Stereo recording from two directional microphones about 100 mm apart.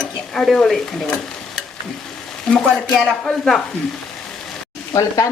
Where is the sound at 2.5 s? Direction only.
10° left (ahead or behind).